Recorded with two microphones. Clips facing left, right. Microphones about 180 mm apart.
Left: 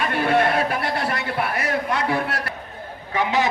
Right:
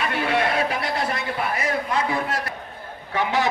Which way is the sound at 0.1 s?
50° left (ahead or behind).